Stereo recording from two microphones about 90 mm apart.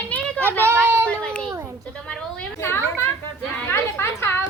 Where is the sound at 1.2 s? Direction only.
10° left (ahead or behind).